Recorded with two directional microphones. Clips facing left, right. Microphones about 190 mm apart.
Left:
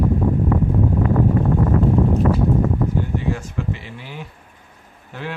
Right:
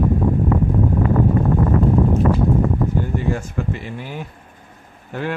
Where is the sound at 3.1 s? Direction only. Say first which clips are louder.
Right 2 dB; 50° right (ahead or behind).